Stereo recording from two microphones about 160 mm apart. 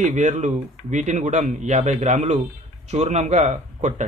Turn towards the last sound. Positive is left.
turn(degrees=-50)  # may be behind; listen again after turning